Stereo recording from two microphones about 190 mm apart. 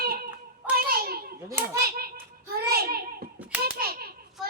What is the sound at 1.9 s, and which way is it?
Hands, 55° right (ahead or behind).